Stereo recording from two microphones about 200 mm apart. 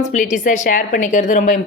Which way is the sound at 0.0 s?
40° left (ahead or behind).